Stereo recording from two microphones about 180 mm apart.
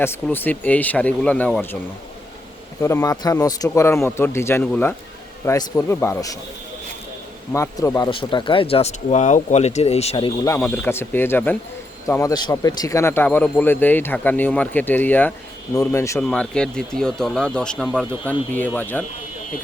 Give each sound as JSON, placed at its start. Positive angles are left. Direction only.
{"t": 0.0, "sound": "a man's voice", "side_deg": 10}
{"t": 2.8, "sound": "a man's voice", "side_deg": 15}
{"t": 7.5, "sound": "speech", "side_deg": 15}
{"t": 10.5, "sound": "a man's voice", "side_deg": 15}
{"t": 16.2, "sound": "a man's voice", "side_deg": 5}